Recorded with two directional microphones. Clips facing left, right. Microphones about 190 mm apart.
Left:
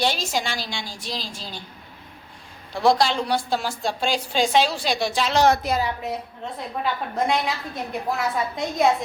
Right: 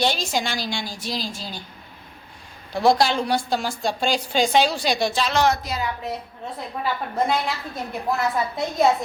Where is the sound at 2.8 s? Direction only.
5° right (ahead or behind).